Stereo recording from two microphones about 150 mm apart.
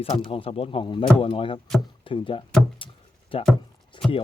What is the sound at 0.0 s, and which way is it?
Speech, 35° left (ahead or behind).